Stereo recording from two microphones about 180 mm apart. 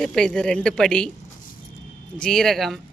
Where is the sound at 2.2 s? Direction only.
5° left (ahead or behind).